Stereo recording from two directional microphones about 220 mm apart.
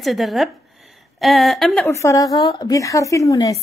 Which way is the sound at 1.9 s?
15° left (ahead or behind).